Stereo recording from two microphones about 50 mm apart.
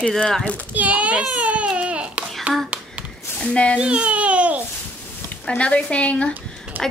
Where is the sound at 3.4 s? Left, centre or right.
Left.